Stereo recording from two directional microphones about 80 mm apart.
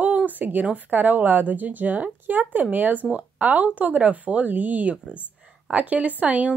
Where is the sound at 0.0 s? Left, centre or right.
Centre.